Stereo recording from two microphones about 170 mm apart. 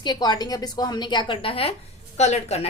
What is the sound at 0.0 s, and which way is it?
A woman's voice, 25° left (ahead or behind).